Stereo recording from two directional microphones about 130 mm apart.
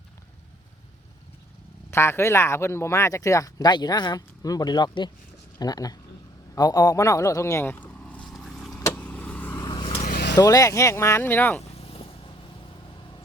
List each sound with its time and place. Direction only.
1.9 s speech: 20° left (ahead or behind)
8.3 s vehicle: centre (ahead or behind)
9.6 s vehicle: 35° left (ahead or behind)
10.3 s speech: 25° left (ahead or behind)
11.8 s vehicle: 45° left (ahead or behind)